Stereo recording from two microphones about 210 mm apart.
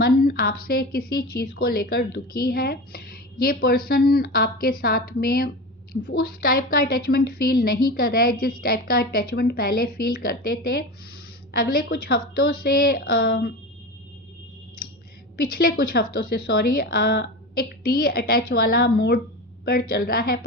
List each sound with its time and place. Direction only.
0.0 s speech: 45° left (ahead or behind)
15.4 s speech: 45° left (ahead or behind)